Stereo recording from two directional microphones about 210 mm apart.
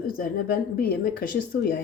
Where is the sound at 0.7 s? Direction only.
45° left (ahead or behind).